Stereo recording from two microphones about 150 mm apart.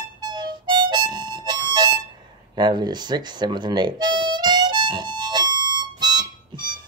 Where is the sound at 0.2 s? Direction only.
30° right (ahead or behind).